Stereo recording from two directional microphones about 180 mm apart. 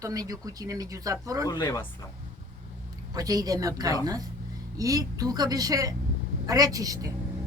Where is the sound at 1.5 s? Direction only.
20° left (ahead or behind).